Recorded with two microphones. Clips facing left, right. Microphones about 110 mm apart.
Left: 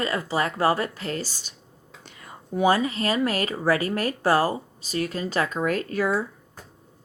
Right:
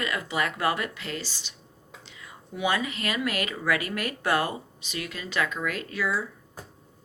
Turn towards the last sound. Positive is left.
turn(degrees=45)  # may be behind; listen again after turning